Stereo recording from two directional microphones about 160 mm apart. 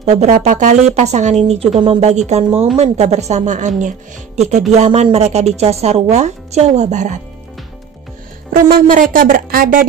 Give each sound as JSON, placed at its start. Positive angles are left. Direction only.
{"t": 0.0, "sound": "a woman's voice", "side_deg": -45}
{"t": 8.7, "sound": "speech", "side_deg": -55}